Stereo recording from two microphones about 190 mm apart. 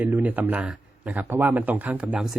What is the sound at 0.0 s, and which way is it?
Speech, 10° right (ahead or behind).